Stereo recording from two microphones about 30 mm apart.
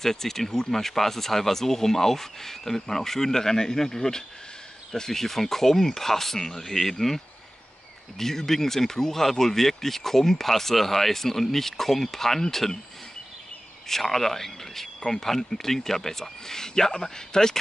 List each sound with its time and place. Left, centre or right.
0.0 s speech: centre
8.2 s speech: centre
13.8 s speech: centre